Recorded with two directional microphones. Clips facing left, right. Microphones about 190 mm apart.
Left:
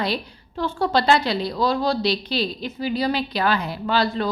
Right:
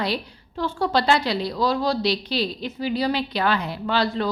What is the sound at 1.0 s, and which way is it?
A woman's voice, 15° right (ahead or behind).